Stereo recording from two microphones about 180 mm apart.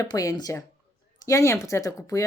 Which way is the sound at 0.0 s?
20° left (ahead or behind).